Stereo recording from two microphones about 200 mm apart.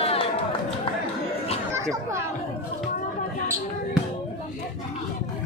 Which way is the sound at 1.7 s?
15° right (ahead or behind).